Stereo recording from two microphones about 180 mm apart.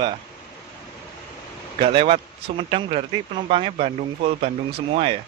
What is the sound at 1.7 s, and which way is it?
Speech, 30° right (ahead or behind).